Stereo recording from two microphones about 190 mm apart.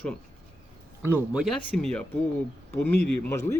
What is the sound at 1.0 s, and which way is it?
Speech, 10° right (ahead or behind).